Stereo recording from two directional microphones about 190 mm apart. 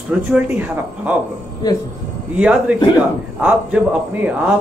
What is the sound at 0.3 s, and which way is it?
Speech, 10° right (ahead or behind).